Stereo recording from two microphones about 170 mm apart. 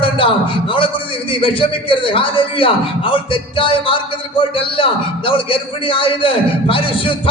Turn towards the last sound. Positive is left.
turn(degrees=30)  # may be behind; listen again after turning